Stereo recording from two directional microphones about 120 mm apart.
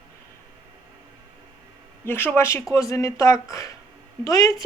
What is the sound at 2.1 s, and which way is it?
Speech, 20° left (ahead or behind).